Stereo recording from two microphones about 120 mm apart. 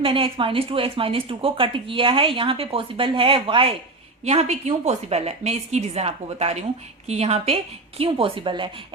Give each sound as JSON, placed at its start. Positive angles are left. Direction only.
{"t": 0.0, "sound": "speech", "side_deg": -45}
{"t": 4.2, "sound": "a woman's voice", "side_deg": -65}